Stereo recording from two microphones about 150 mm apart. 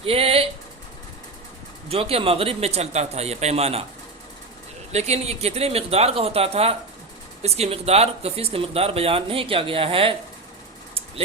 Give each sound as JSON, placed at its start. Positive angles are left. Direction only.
{"t": 0.0, "sound": "a sound", "side_deg": -40}
{"t": 1.9, "sound": "speech", "side_deg": -40}
{"t": 4.9, "sound": "speech", "side_deg": -45}